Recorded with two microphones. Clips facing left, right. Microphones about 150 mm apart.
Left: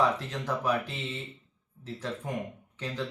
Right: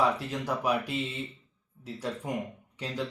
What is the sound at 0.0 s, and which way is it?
A man's voice, 10° right (ahead or behind).